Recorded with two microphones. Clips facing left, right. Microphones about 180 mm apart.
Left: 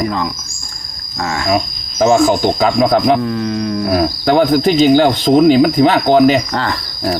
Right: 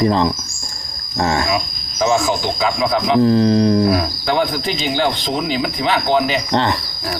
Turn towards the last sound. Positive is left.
turn(degrees=-25)  # may be behind; listen again after turning